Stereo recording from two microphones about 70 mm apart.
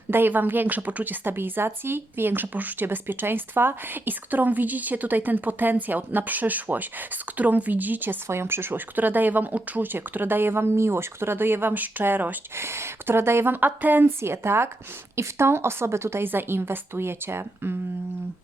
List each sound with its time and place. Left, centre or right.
0.1 s a woman's voice: right
12.5 s a woman's voice: right
14.2 s a woman's voice: right